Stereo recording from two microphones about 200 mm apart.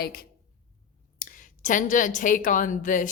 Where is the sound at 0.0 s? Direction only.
50° left (ahead or behind).